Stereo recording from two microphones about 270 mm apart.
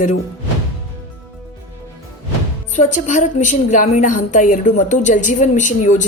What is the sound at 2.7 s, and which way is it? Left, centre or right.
A woman's voice, left.